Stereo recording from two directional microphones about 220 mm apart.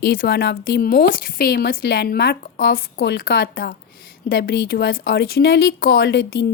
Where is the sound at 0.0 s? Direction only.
45° left (ahead or behind).